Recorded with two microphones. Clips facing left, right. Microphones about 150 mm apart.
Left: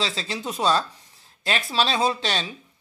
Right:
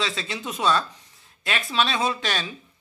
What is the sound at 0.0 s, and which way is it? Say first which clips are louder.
A woman's voice: left 1 dB; 35° left (ahead or behind).